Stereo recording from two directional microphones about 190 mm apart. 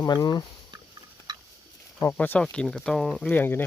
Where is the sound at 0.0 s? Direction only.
20° left (ahead or behind).